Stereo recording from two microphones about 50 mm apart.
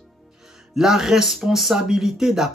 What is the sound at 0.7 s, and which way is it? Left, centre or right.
Speech, centre.